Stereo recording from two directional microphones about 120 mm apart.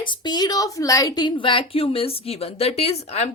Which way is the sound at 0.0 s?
40° left (ahead or behind).